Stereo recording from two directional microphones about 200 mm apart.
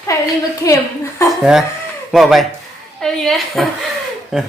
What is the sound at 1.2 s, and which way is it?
Speech, 5° right (ahead or behind).